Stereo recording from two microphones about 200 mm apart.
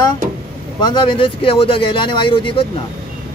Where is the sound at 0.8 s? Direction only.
20° left (ahead or behind).